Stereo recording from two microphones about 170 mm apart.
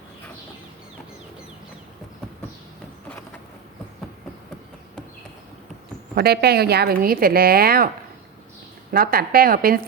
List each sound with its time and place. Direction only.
6.1 s speech: 70° right (ahead or behind)
8.9 s speech: 60° right (ahead or behind)